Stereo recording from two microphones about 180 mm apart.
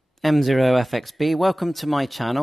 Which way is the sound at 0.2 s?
Centre (ahead or behind).